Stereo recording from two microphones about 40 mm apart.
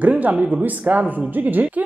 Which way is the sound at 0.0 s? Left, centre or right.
Right.